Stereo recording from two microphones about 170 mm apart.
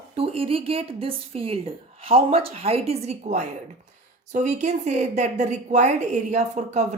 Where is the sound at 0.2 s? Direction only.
35° right (ahead or behind).